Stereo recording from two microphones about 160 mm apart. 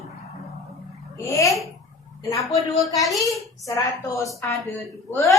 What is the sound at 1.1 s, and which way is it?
Babbling, 15° left (ahead or behind).